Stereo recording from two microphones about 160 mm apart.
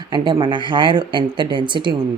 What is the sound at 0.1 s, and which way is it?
Speech, 30° right (ahead or behind).